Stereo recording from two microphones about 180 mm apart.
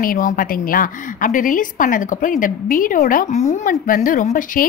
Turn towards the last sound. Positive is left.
turn(degrees=45)  # may be behind; listen again after turning